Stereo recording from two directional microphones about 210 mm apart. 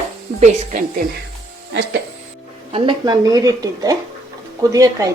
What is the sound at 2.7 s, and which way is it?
Speech, 20° right (ahead or behind).